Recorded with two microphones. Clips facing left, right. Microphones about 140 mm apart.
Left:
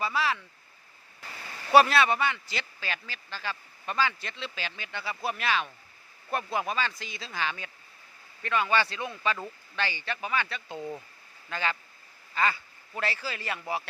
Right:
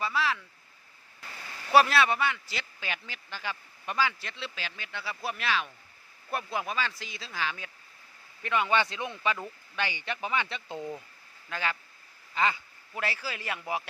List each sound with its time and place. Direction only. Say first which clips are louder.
0.0 s a sound: left 1 dB; centre (ahead or behind)
1.7 s speech: left 2 dB; centre (ahead or behind)
2.8 s speech: left 1 dB; 15° right (ahead or behind)
8.4 s speech: even; 15° right (ahead or behind)
10.8 s speech: left 1 dB; centre (ahead or behind)
12.3 s speech: even; 20° right (ahead or behind)
12.9 s speech: left 1 dB; 5° right (ahead or behind)